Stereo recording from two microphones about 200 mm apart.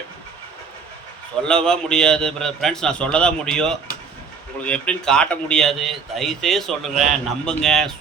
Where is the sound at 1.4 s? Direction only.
5° left (ahead or behind).